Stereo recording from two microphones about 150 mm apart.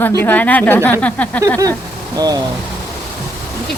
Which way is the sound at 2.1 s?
25° right (ahead or behind).